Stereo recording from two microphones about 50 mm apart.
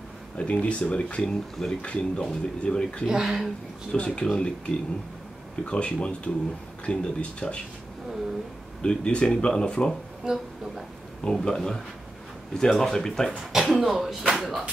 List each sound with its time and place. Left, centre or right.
0.4 s speech: left
3.1 s speech: centre
3.9 s speech: left
8.8 s speech: centre
10.2 s speech: centre
11.4 s speech: centre
13.5 s speech: centre